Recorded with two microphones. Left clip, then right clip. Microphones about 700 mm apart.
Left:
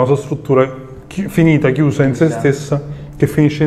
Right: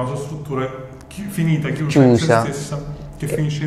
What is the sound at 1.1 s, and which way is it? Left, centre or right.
Speech, left.